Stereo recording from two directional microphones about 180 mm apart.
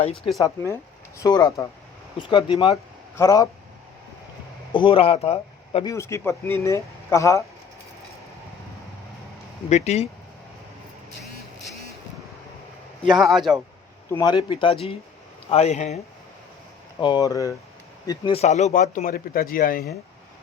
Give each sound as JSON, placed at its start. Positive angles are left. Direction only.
{"t": 0.0, "sound": "speech", "side_deg": 30}
{"t": 0.3, "sound": "speech", "side_deg": 15}
{"t": 4.7, "sound": "speech", "side_deg": 30}
{"t": 5.8, "sound": "speech", "side_deg": 15}
{"t": 9.6, "sound": "speech", "side_deg": 40}
{"t": 13.1, "sound": "a man's voice", "side_deg": 0}
{"t": 14.1, "sound": "speech", "side_deg": 20}
{"t": 17.0, "sound": "speech", "side_deg": 25}